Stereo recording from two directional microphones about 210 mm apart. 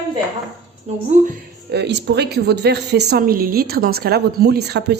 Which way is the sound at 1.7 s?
55° right (ahead or behind).